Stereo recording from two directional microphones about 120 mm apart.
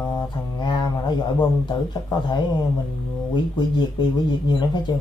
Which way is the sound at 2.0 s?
35° left (ahead or behind).